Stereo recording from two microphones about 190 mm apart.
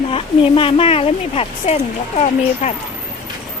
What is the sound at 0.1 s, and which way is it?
Speech, 30° left (ahead or behind).